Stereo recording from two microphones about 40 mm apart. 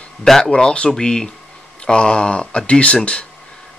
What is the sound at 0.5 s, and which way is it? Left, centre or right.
Speech, left.